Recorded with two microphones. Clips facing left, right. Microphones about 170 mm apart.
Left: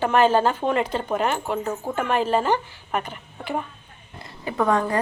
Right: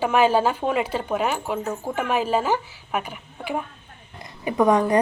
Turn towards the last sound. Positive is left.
turn(degrees=-15)  # may be behind; listen again after turning